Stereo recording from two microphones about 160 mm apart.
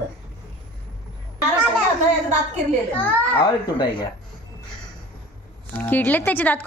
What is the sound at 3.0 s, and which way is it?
Speech, 10° left (ahead or behind).